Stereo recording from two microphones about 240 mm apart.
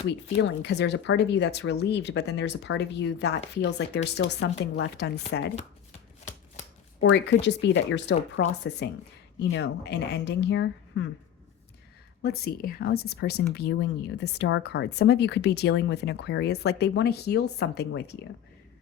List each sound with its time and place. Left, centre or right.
0.6 s speech: left
7.0 s speech: left
12.2 s speech: left